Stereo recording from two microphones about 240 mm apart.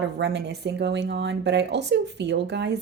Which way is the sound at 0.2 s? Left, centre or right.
Right.